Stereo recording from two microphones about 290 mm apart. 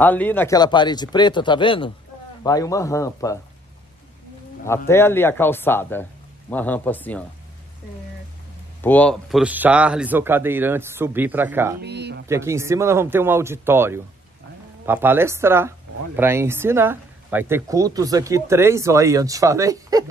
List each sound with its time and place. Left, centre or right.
0.0 s speech: centre
4.6 s speech: centre
8.8 s speech: centre
11.8 s speech: right
12.3 s speech: centre